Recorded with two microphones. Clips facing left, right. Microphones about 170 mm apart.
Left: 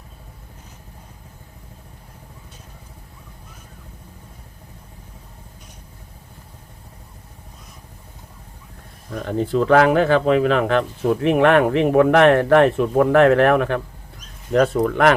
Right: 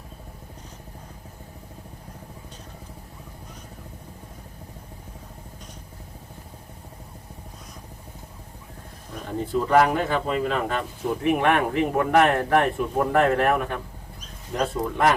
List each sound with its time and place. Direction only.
9.2 s speech: 90° left